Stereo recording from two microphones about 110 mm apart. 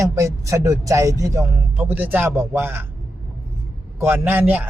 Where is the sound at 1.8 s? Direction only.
15° right (ahead or behind).